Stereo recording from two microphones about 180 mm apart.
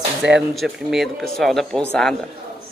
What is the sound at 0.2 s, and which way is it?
Speech, 75° right (ahead or behind).